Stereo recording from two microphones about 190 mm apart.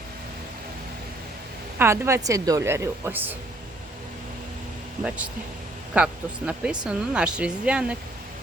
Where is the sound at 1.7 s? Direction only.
15° right (ahead or behind).